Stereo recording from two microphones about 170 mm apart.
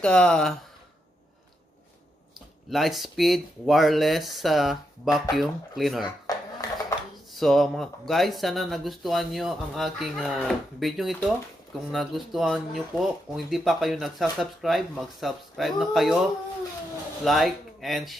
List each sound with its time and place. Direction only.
0.0 s speech: 5° left (ahead or behind)
2.7 s speech: centre (ahead or behind)
6.3 s a sound: 20° left (ahead or behind)
7.3 s speech: centre (ahead or behind)
17.2 s speech: centre (ahead or behind)